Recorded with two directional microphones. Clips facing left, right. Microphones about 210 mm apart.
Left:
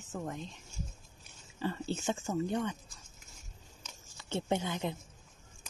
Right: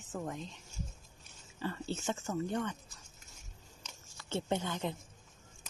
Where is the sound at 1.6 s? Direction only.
20° left (ahead or behind).